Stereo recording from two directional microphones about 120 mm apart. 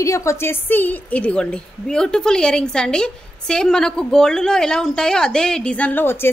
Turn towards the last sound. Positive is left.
turn(degrees=15)  # may be behind; listen again after turning